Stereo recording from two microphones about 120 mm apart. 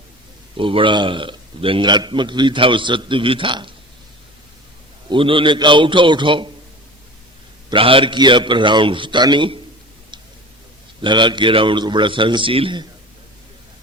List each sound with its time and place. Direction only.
0.5 s a man's voice: 45° right (ahead or behind)
5.0 s a man's voice: 45° right (ahead or behind)
7.7 s a man's voice: 50° right (ahead or behind)
11.0 s a man's voice: 40° right (ahead or behind)